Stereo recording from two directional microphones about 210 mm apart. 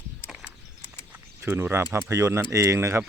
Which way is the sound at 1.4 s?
10° right (ahead or behind).